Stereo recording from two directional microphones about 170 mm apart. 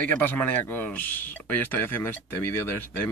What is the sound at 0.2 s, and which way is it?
Speech, 10° left (ahead or behind).